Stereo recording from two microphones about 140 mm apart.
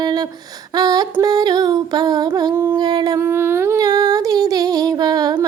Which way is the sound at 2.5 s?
15° right (ahead or behind).